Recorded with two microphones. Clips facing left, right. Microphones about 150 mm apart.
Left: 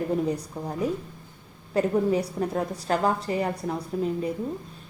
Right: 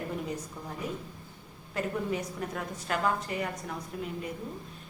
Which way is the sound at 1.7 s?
35° left (ahead or behind).